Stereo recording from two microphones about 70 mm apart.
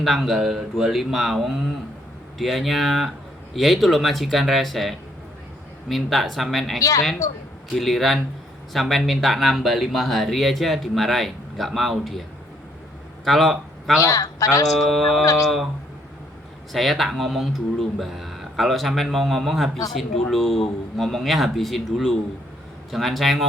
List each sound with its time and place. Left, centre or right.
0.0 s speech: centre
13.2 s a man's voice: centre
14.0 s a man's voice: left
14.8 s speech: centre
16.7 s speech: centre